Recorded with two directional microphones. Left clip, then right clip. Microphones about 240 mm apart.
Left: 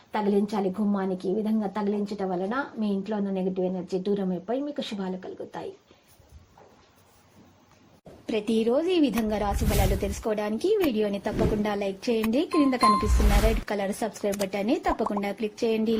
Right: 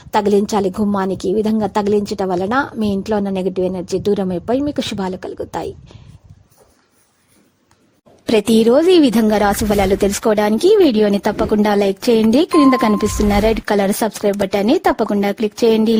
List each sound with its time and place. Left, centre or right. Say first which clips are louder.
0.1 s a woman's voice: right 12 dB; right
8.3 s a woman's voice: right 13 dB; right